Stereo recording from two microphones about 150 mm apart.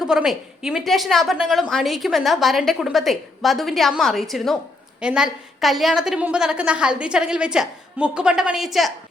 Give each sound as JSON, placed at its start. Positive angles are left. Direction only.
{"t": 0.0, "sound": "a woman's voice", "side_deg": -5}